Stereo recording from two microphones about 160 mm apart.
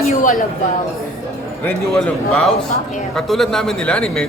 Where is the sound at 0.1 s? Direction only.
55° left (ahead or behind).